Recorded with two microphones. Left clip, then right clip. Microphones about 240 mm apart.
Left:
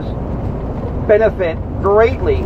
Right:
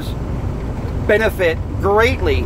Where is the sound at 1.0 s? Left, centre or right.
Right.